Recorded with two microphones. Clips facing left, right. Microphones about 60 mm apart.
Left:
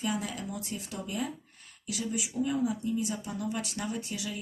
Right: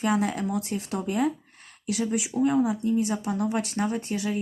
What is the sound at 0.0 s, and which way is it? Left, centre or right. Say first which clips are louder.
Speech: right 8 dB; right.